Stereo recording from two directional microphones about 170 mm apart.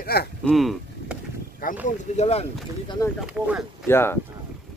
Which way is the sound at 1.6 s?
55° left (ahead or behind).